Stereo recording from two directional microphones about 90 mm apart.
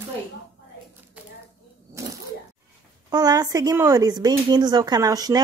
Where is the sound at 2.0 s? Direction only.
35° right (ahead or behind).